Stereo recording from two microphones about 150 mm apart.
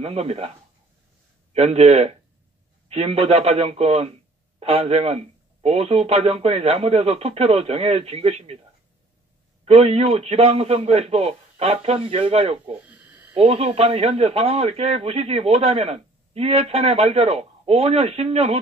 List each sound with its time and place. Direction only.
0.0 s speech: 45° right (ahead or behind)
9.7 s speech: 45° right (ahead or behind)
12.7 s a sound: 10° right (ahead or behind)
13.3 s speech: 40° right (ahead or behind)